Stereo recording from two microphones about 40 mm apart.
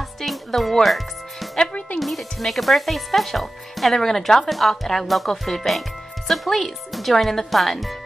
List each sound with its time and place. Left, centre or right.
0.2 s music: centre
1.7 s music: left
2.0 s speech: centre